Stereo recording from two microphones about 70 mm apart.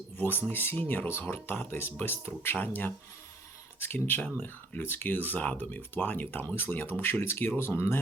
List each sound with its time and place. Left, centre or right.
0.2 s speech: left